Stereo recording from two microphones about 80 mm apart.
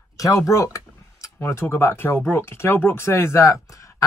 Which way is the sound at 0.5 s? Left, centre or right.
Left.